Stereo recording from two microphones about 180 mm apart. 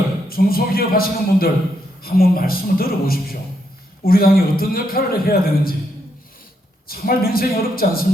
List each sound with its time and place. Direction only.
0.3 s a man's voice: 55° left (ahead or behind)
6.8 s a man's voice: 55° left (ahead or behind)